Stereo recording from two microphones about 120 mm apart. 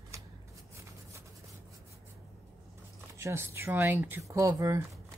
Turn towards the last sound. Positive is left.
turn(degrees=-25)  # may be behind; listen again after turning